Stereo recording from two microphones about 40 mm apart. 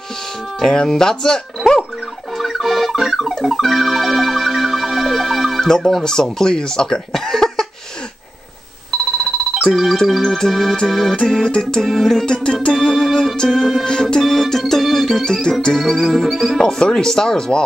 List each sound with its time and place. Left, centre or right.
0.6 s organ: centre
2.3 s music: centre
5.6 s speech: centre
8.9 s a sound: centre
9.8 s music: centre
11.2 s organ: centre
11.9 s music: centre
12.7 s organ: centre
13.6 s music: centre
13.8 s organ: centre
14.2 s organ: centre
15.8 s music: centre
16.6 s organ: centre